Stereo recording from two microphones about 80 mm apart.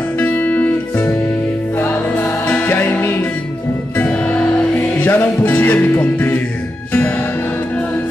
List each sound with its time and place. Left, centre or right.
0.2 s music: left
4.0 s music: centre